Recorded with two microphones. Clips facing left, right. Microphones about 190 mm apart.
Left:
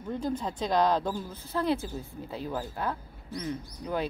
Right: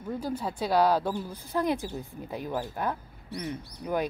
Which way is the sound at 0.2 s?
10° right (ahead or behind).